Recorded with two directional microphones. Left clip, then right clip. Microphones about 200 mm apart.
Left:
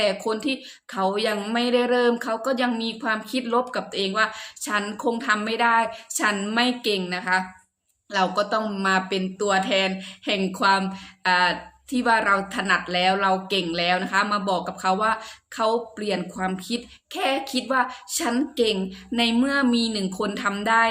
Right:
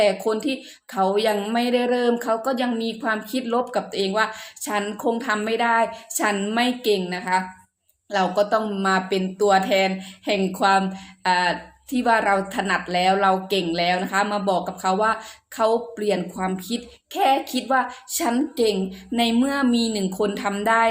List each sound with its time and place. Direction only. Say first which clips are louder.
0.0 s speech: right 3 dB; 10° left (ahead or behind)